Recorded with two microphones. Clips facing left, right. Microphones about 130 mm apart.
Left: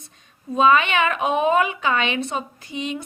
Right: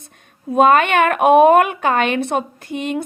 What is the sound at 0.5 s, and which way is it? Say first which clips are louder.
Speech: right 5 dB; 55° right (ahead or behind).